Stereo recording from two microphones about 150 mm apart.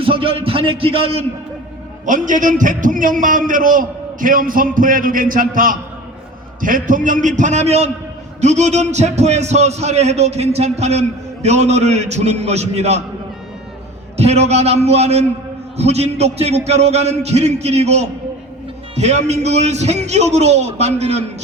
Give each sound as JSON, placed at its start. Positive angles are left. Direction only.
{"t": 0.0, "sound": "a man's voice", "side_deg": -35}
{"t": 2.0, "sound": "a man's voice", "side_deg": -60}
{"t": 14.2, "sound": "a man's voice", "side_deg": -45}